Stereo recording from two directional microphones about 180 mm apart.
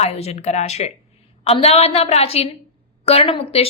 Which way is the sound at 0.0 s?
35° left (ahead or behind).